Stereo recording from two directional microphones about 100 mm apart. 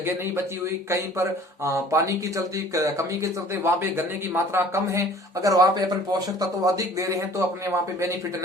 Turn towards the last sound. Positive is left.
turn(degrees=-30)  # may be behind; listen again after turning